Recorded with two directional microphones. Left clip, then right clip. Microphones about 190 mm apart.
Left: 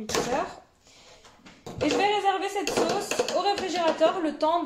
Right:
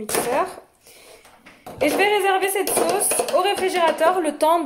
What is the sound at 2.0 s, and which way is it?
A woman's voice, 50° right (ahead or behind).